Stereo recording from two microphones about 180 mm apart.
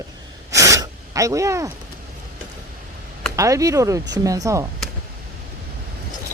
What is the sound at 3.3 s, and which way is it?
Speech, 15° right (ahead or behind).